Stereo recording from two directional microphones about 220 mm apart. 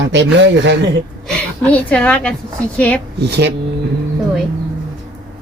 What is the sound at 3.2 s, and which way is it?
Speech, 50° right (ahead or behind).